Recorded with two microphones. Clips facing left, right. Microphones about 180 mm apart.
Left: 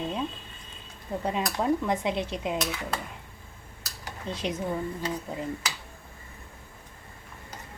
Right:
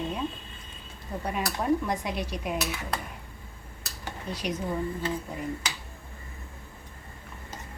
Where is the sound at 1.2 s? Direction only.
20° left (ahead or behind).